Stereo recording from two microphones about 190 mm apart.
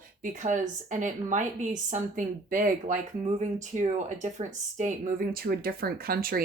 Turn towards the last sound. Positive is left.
turn(degrees=-50)  # may be behind; listen again after turning